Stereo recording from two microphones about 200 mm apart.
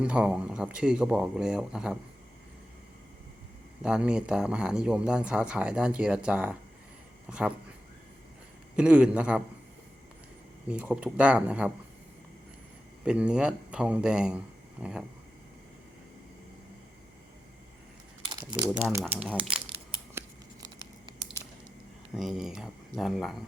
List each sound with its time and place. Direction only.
0.0 s speech: 5° right (ahead or behind)
3.8 s speech: 5° right (ahead or behind)
8.7 s speech: 5° right (ahead or behind)
10.7 s speech: 5° right (ahead or behind)
13.1 s speech: 5° right (ahead or behind)
18.3 s crumpling: 20° right (ahead or behind)
18.7 s speech: 5° right (ahead or behind)
22.1 s speech: centre (ahead or behind)